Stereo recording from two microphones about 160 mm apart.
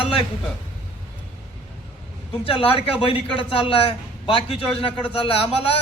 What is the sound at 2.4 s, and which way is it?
Speech, 35° left (ahead or behind).